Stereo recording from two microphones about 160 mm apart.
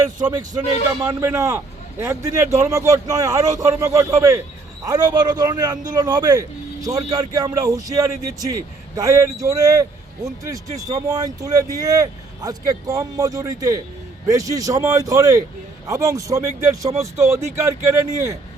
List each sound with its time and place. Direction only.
0.0 s a man's voice: 25° right (ahead or behind)